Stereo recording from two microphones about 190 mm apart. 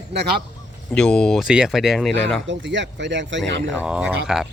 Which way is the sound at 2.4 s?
70° right (ahead or behind).